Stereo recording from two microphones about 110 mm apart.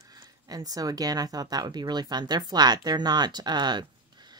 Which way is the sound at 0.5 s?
35° right (ahead or behind).